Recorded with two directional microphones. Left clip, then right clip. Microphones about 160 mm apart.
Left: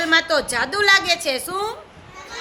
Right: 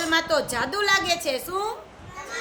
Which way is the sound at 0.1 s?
25° left (ahead or behind).